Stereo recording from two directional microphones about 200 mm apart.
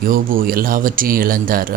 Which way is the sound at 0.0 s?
45° right (ahead or behind).